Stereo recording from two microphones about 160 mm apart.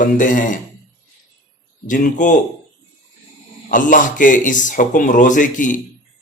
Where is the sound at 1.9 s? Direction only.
55° left (ahead or behind).